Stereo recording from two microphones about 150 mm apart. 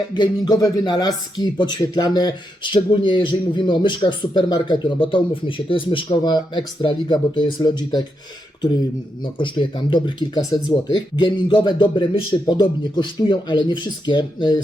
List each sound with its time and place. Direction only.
0.1 s speech: 25° left (ahead or behind)
9.2 s speech: 35° left (ahead or behind)